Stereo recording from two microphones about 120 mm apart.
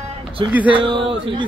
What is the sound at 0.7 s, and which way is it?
Speech, 45° right (ahead or behind).